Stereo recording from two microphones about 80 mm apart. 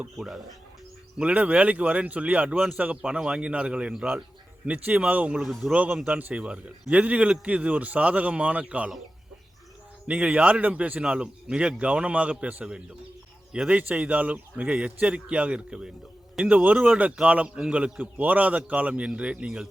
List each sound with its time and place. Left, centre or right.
1.2 s a man's voice: centre
5.4 s a man's voice: centre
5.7 s a man's voice: centre
10.1 s a man's voice: centre